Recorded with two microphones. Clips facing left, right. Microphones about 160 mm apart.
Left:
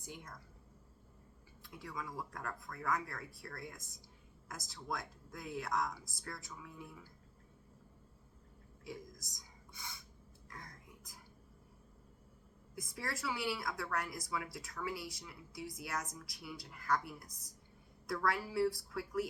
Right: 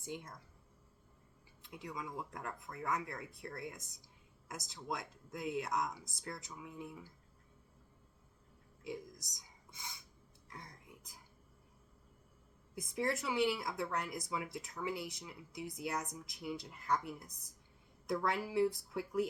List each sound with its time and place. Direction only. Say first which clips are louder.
0.0 s speech: right 5 dB; 25° right (ahead or behind)
1.6 s speech: right 1 dB; 20° right (ahead or behind)
10.5 s whispering: right 1 dB; 20° right (ahead or behind)
12.7 s speech: right 7 dB; 20° right (ahead or behind)